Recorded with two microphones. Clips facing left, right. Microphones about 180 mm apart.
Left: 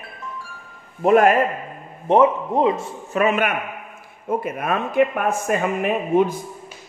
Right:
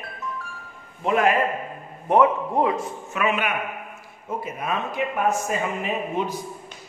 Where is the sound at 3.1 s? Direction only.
45° left (ahead or behind).